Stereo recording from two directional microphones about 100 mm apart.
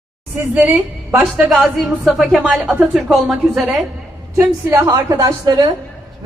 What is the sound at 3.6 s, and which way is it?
Speech, 10° right (ahead or behind).